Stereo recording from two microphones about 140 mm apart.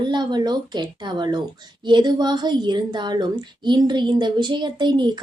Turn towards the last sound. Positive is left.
turn(degrees=-35)  # may be behind; listen again after turning